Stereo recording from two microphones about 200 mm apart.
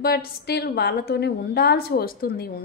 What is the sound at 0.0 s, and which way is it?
A woman's voice, 50° left (ahead or behind).